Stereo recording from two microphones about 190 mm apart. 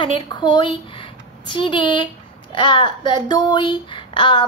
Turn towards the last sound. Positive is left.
turn(degrees=25)  # may be behind; listen again after turning